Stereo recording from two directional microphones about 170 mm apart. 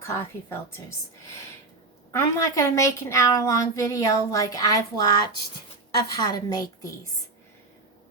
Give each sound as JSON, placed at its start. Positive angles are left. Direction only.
{"t": 0.0, "sound": "a woman's voice", "side_deg": 15}
{"t": 2.1, "sound": "a woman's voice", "side_deg": 20}